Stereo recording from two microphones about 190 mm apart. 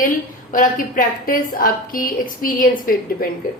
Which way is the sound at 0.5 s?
45° left (ahead or behind).